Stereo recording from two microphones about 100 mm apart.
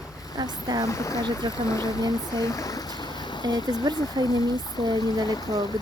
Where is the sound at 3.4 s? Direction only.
40° right (ahead or behind).